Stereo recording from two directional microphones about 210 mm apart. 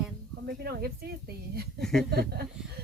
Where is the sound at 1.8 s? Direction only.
Centre (ahead or behind).